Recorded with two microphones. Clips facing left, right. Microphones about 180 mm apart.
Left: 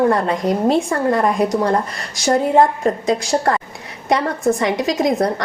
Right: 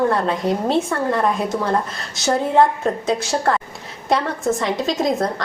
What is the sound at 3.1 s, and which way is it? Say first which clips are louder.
Speech: left 1 dB; centre (ahead or behind).